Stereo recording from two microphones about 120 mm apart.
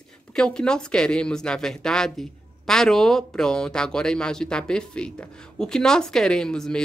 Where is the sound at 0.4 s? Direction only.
5° left (ahead or behind).